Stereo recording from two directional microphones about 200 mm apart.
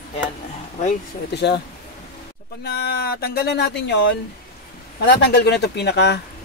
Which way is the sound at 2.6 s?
55° left (ahead or behind).